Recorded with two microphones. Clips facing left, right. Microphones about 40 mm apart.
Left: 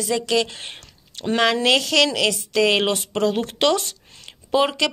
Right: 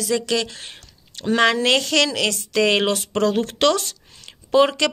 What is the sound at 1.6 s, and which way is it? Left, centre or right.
Speech, centre.